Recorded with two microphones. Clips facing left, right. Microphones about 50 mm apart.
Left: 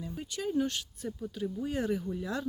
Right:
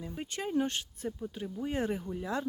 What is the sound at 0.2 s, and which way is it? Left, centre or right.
Speech, right.